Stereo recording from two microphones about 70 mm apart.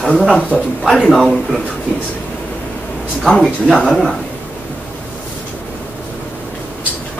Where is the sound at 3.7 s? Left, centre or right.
Centre.